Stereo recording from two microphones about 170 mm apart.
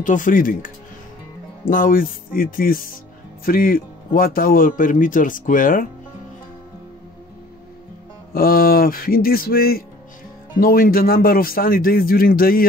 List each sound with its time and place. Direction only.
0.0 s speech: 50° left (ahead or behind)
1.7 s speech: 55° left (ahead or behind)
8.3 s speech: 60° left (ahead or behind)